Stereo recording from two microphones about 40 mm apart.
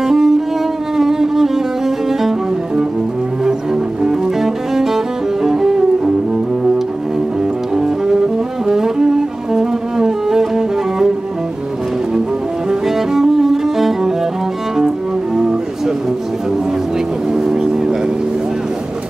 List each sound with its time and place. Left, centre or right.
0.0 s music: centre
3.4 s cello: centre
7.7 s music: centre
12.6 s cello: centre
17.3 s a sound: centre